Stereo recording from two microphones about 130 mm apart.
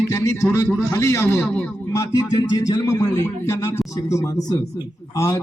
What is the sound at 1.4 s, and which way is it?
Speech, 10° left (ahead or behind).